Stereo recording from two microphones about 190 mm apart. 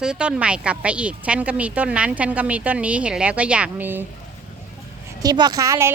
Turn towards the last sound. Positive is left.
turn(degrees=-15)  # may be behind; listen again after turning